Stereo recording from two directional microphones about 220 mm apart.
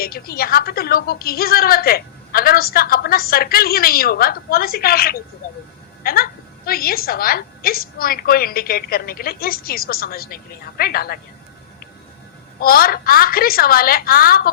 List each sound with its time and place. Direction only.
0.0 s a woman's voice: 45° left (ahead or behind)
12.5 s a woman's voice: 40° left (ahead or behind)